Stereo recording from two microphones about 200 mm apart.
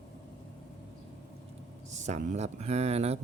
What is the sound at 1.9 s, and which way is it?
Speech, 35° right (ahead or behind).